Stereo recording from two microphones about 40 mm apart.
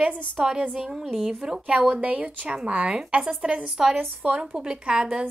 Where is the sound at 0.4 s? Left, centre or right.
Centre.